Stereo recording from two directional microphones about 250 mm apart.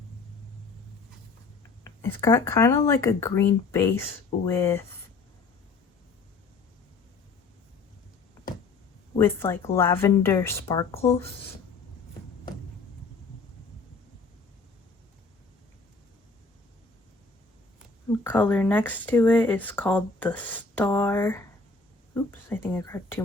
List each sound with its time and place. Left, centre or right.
1.8 s speech: centre
9.1 s speech: centre
10.9 s speech: left
18.2 s speech: centre